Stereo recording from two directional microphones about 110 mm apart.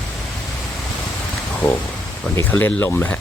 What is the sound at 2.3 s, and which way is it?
Speech, 15° left (ahead or behind).